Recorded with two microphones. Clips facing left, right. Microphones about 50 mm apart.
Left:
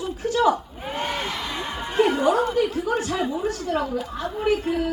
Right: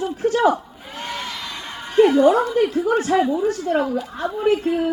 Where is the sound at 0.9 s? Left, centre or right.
Centre.